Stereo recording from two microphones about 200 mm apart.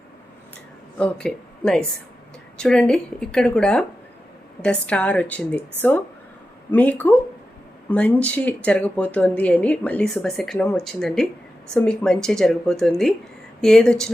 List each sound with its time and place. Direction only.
0.9 s a woman's voice: 5° left (ahead or behind)
6.7 s a woman's voice: 5° left (ahead or behind)